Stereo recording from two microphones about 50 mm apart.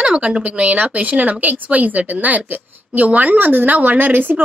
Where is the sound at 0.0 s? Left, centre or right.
Centre.